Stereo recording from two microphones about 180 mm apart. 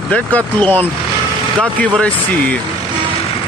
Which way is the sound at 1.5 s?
5° left (ahead or behind).